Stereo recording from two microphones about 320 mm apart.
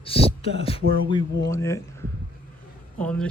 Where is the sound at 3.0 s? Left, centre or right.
Centre.